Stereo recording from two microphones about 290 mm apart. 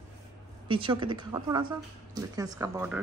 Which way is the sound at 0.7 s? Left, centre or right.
Centre.